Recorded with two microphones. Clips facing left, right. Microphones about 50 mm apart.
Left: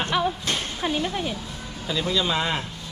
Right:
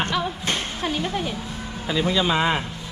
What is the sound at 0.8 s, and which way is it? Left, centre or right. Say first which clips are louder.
Speech: even; centre.